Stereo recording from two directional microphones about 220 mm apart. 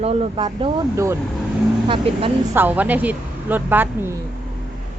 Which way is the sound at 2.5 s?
10° right (ahead or behind).